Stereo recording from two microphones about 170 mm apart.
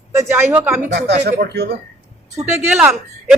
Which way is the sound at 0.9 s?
80° right.